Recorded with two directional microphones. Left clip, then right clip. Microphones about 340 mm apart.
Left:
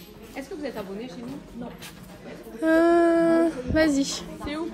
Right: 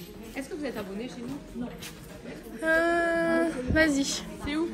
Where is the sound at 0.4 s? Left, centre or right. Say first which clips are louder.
Left 1 dB; left.